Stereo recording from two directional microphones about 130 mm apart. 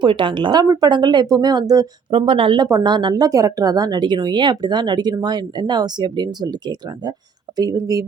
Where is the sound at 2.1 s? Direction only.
40° right (ahead or behind).